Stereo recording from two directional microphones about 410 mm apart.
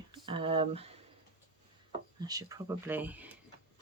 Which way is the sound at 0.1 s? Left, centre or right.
Centre.